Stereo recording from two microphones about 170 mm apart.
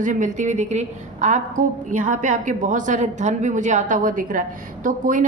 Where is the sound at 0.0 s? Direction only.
45° right (ahead or behind).